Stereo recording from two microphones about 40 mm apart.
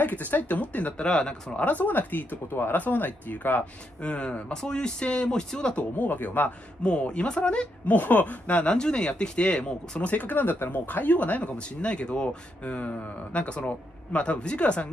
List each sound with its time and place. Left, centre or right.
0.0 s speech: left
0.9 s speech: left
1.7 s speech: left
2.5 s speech: left
2.8 s speech: left
4.0 s speech: left
5.8 s speech: left
6.8 s speech: left
7.8 s speech: left
8.7 s speech: left
11.5 s speech: left
12.6 s speech: left